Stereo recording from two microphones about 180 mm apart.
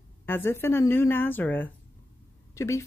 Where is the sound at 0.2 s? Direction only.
10° left (ahead or behind).